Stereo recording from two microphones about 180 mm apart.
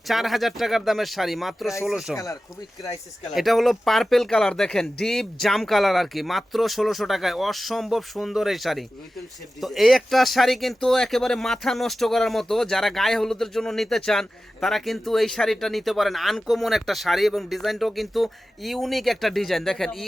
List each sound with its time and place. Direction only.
0.1 s speech: centre (ahead or behind)
2.1 s speech: 20° left (ahead or behind)
3.3 s speech: centre (ahead or behind)